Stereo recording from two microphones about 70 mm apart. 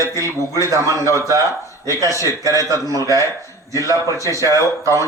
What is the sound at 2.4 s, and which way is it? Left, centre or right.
A man's voice, right.